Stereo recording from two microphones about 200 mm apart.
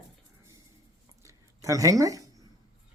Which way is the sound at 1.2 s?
15° right (ahead or behind).